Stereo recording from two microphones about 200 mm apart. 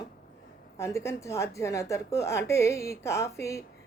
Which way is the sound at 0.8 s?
15° left (ahead or behind).